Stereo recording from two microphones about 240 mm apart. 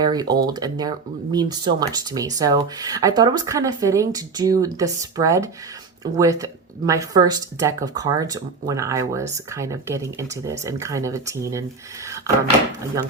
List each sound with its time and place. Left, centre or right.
0.0 s speech: centre